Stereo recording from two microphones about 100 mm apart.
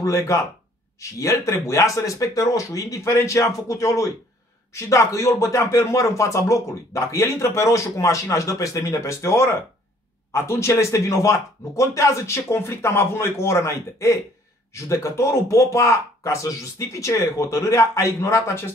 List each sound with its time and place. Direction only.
0.0 s speech: 30° left (ahead or behind)